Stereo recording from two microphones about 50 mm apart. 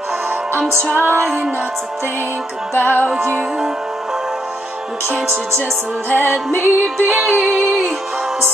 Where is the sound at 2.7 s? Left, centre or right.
Left.